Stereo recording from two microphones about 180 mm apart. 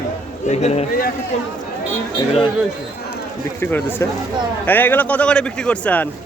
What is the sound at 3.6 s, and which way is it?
Speech, 10° left (ahead or behind).